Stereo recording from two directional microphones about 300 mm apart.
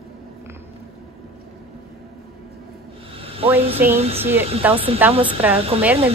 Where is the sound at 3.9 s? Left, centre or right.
Centre.